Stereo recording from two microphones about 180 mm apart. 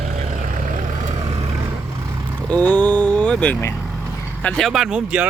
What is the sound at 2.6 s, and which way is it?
Speech, 10° left (ahead or behind).